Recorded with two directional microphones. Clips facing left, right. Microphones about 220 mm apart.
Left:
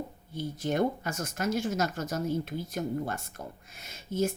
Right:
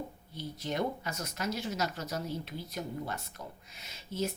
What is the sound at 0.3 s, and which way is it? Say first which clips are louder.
Speech: left 6 dB; 50° left (ahead or behind).